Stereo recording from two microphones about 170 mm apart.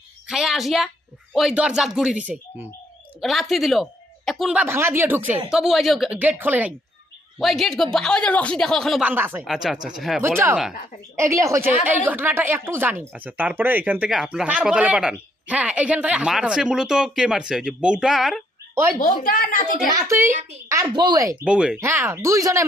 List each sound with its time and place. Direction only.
0.3 s a sound: centre (ahead or behind)
1.3 s speech: centre (ahead or behind)
6.1 s speech: 10° right (ahead or behind)
7.3 s speech: centre (ahead or behind)
9.0 s speech: 10° right (ahead or behind)
10.2 s speech: 15° right (ahead or behind)
18.7 s a woman's voice: 15° right (ahead or behind)
18.9 s a woman's voice: 50° left (ahead or behind)
19.9 s speech: 20° right (ahead or behind)
20.9 s speech: 25° right (ahead or behind)
21.4 s speech: 5° right (ahead or behind)